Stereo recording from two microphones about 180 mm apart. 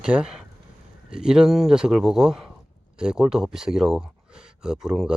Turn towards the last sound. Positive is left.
turn(degrees=-5)  # may be behind; listen again after turning